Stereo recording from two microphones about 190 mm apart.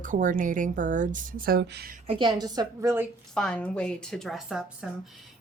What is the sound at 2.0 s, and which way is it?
A woman's voice, 25° right (ahead or behind).